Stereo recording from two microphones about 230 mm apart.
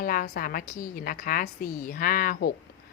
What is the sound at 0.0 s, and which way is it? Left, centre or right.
Speech, left.